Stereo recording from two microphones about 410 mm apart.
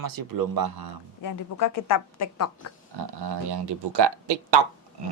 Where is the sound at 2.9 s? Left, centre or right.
Right.